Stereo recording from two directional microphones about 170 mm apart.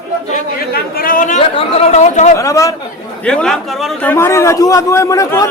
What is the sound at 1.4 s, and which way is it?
Speech, 35° left (ahead or behind).